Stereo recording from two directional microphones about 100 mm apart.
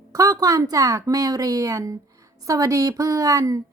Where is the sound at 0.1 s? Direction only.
35° right (ahead or behind).